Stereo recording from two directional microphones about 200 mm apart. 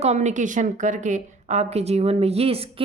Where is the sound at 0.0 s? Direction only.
35° right (ahead or behind).